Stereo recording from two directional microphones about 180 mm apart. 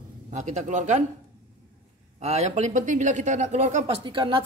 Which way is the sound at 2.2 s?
40° right (ahead or behind).